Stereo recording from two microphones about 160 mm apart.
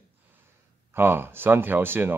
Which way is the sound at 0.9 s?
15° right (ahead or behind).